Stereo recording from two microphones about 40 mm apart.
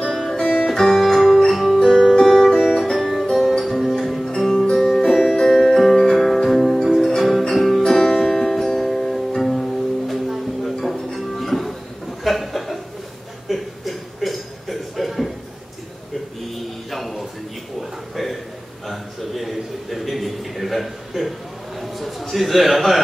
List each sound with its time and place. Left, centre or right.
0.3 s music: centre
1.0 s music: centre
2.6 s music: centre
12.2 s chuckle: centre
13.5 s a sound: centre
16.9 s a sound: centre